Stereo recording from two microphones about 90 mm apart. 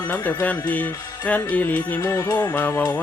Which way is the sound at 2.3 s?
20° left (ahead or behind).